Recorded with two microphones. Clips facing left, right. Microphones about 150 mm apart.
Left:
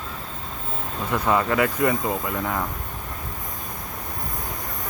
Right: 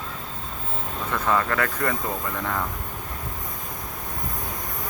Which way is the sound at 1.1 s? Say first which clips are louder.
Left 3 dB; 15° left (ahead or behind).